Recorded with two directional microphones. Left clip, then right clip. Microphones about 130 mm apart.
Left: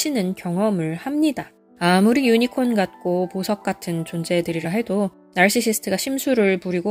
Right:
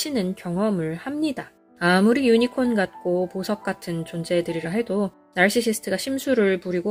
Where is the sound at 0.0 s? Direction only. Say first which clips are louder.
Left 3 dB; 50° left (ahead or behind).